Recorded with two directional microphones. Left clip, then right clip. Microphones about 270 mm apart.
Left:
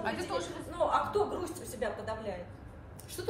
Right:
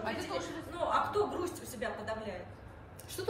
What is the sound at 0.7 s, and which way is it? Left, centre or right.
A woman's voice, centre.